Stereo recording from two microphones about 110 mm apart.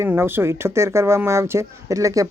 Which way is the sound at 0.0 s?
20° right (ahead or behind).